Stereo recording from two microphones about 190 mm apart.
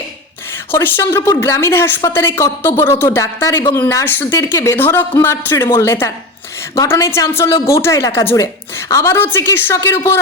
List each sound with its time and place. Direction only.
0.7 s a woman's voice: 10° left (ahead or behind)